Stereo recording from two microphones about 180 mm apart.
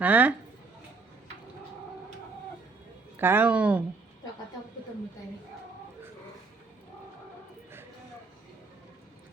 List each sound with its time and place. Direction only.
0.0 s speech: 10° right (ahead or behind)
3.2 s speech: 10° right (ahead or behind)